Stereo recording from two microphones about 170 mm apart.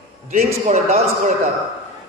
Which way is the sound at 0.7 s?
45° right (ahead or behind).